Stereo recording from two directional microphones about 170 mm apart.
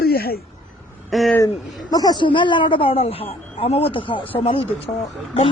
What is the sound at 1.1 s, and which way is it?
Speech, centre (ahead or behind).